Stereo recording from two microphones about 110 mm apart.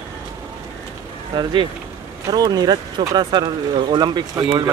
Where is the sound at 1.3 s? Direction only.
45° right (ahead or behind).